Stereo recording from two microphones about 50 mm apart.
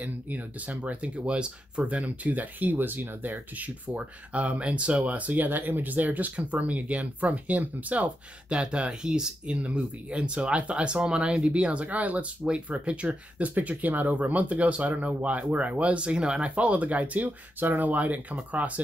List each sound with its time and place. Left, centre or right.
0.0 s speech: right